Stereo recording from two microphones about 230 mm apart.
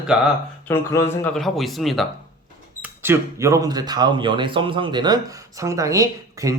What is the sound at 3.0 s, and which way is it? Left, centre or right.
Speech, centre.